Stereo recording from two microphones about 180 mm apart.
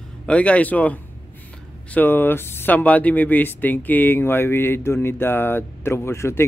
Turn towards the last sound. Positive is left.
turn(degrees=15)  # may be behind; listen again after turning